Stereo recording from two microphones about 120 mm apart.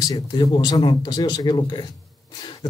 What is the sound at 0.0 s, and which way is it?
Speech, 35° left (ahead or behind).